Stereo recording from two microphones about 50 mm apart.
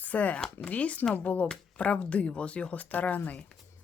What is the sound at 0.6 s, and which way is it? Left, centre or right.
Speech, left.